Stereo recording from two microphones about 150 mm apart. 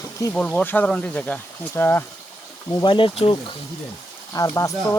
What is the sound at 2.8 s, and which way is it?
Speech, 35° left (ahead or behind).